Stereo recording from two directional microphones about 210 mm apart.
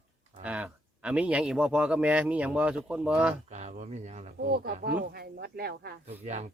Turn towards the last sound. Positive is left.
turn(degrees=-35)  # may be behind; listen again after turning